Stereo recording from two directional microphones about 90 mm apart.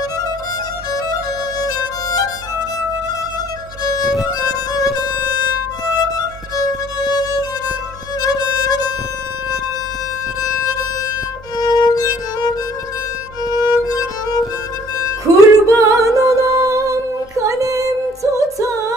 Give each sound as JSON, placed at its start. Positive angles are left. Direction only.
{"t": 0.9, "sound": "music", "side_deg": 45}
{"t": 4.3, "sound": "music", "side_deg": 45}
{"t": 7.0, "sound": "music", "side_deg": 45}
{"t": 10.4, "sound": "violin", "side_deg": 40}
{"t": 11.5, "sound": "music", "side_deg": 45}
{"t": 13.5, "sound": "violin", "side_deg": 50}
{"t": 15.3, "sound": "music", "side_deg": -40}